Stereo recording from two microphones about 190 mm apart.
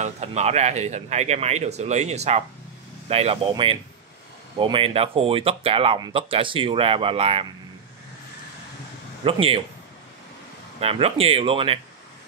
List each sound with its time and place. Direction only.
0.0 s speech: 35° right (ahead or behind)
5.9 s speech: 20° right (ahead or behind)
9.2 s speech: 30° right (ahead or behind)
10.8 s speech: 30° right (ahead or behind)